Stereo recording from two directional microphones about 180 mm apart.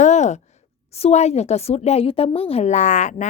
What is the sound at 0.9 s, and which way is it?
A woman's voice, 35° left (ahead or behind).